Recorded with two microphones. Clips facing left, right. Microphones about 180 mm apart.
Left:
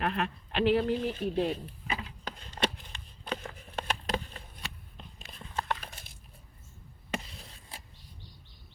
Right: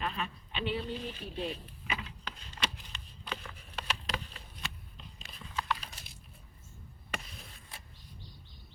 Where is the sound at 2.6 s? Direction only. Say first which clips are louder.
Left 7 dB; 50° left (ahead or behind).